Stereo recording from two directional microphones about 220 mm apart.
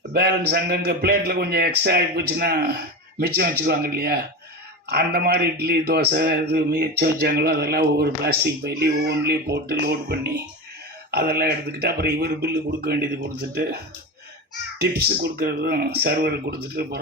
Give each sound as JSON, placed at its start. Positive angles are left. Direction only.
{"t": 0.1, "sound": "speech", "side_deg": -45}
{"t": 14.8, "sound": "speech", "side_deg": -45}